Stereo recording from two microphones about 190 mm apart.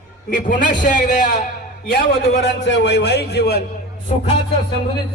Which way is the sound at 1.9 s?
70° left (ahead or behind).